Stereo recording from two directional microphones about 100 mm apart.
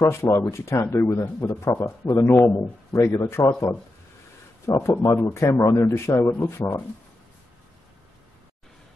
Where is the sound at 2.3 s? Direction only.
15° left (ahead or behind).